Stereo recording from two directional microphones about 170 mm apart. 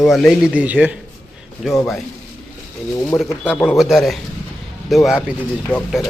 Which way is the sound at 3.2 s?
Centre (ahead or behind).